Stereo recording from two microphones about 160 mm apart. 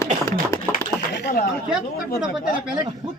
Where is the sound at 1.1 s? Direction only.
80° left.